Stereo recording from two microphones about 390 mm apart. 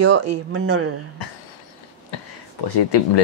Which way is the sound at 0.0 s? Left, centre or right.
Right.